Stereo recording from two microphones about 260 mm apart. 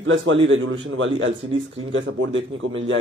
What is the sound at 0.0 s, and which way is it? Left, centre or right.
Speech, right.